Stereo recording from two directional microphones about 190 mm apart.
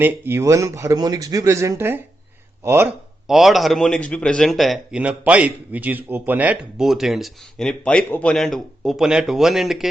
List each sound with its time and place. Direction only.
0.0 s speech: 15° right (ahead or behind)